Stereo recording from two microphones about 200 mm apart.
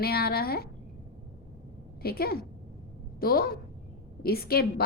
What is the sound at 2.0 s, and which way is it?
A woman's voice, 50° left (ahead or behind).